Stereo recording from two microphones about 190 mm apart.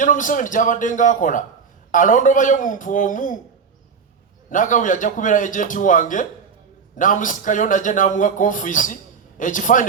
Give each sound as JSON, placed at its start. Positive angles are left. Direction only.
{"t": 0.0, "sound": "a man's voice", "side_deg": 45}
{"t": 4.4, "sound": "a man's voice", "side_deg": 45}